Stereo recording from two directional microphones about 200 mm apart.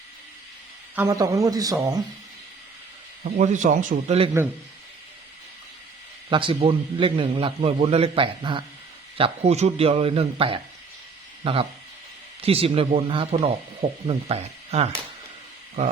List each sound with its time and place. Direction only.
0.9 s speech: 15° right (ahead or behind)
3.2 s speech: 35° right (ahead or behind)
6.3 s a man's voice: 25° right (ahead or behind)